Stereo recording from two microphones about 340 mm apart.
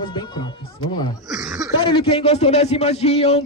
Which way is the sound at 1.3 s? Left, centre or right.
Centre.